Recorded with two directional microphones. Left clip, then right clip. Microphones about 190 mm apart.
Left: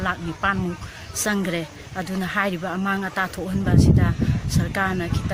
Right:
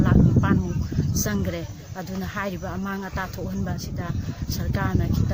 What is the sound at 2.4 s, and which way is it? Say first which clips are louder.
Speech: left 6 dB; 15° right (ahead or behind).